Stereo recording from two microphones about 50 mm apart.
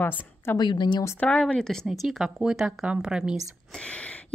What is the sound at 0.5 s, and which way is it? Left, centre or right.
Speech, left.